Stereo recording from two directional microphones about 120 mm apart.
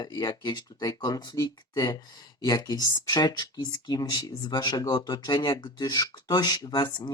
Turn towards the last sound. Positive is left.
turn(degrees=35)  # may be behind; listen again after turning